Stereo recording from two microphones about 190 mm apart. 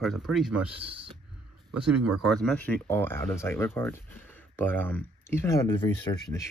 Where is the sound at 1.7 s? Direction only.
5° right (ahead or behind); by 6.5 s 15° left (ahead or behind).